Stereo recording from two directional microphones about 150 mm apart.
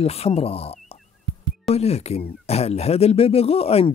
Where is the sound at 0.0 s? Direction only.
40° left (ahead or behind).